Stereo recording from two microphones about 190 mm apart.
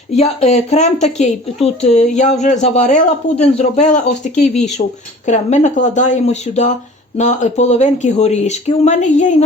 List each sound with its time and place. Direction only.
0.1 s a woman's voice: 35° left (ahead or behind)